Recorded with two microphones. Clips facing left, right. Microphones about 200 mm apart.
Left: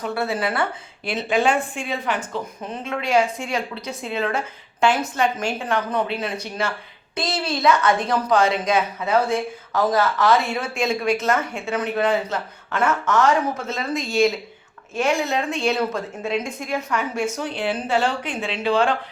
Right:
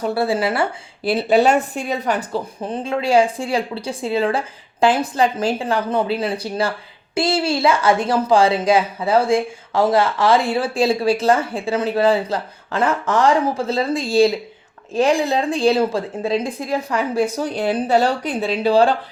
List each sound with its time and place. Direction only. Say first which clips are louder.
0.0 s a woman's voice: right 5 dB; 35° right (ahead or behind)